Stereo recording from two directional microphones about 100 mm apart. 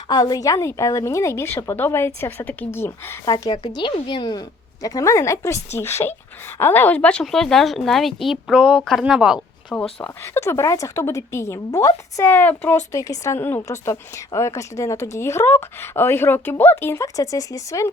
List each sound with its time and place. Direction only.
0.1 s a woman's voice: 40° left (ahead or behind)
3.2 s a woman's voice: 40° left (ahead or behind); by 9.7 s 5° right (ahead or behind)
10.0 s a woman's voice: 25° left (ahead or behind)
12.3 s speech: 15° left (ahead or behind)
12.9 s a woman's voice: 30° left (ahead or behind)